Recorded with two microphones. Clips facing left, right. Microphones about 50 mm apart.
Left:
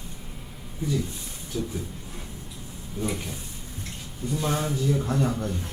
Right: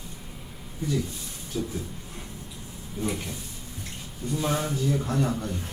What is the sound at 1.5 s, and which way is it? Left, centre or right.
Speech, centre.